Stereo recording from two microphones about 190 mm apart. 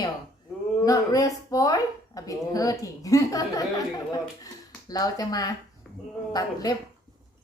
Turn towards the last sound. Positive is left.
turn(degrees=20)  # may be behind; listen again after turning